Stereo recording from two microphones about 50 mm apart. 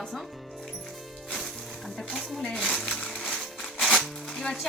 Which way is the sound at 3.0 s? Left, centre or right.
Centre.